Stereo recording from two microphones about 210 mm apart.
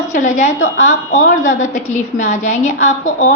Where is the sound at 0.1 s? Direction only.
35° left (ahead or behind).